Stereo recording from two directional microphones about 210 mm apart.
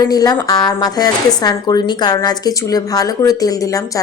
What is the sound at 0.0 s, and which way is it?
Speech, 20° left (ahead or behind).